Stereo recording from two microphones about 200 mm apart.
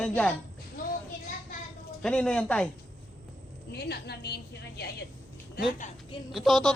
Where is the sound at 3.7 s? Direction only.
55° left (ahead or behind).